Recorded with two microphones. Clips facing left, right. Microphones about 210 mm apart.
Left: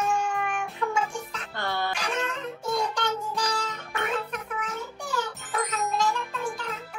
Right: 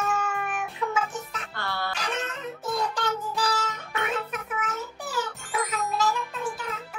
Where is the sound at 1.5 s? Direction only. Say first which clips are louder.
Left 3 dB; 20° left (ahead or behind).